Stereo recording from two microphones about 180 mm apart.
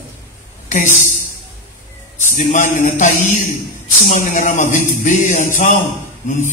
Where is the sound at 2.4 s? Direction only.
45° left (ahead or behind).